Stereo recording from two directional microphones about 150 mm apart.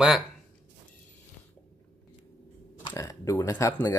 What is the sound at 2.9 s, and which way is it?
Speech, 20° left (ahead or behind).